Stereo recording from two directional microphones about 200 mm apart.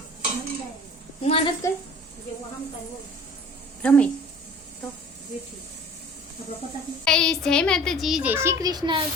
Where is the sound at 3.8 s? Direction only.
5° left (ahead or behind).